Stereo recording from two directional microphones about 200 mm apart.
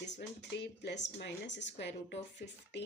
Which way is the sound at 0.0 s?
60° left (ahead or behind).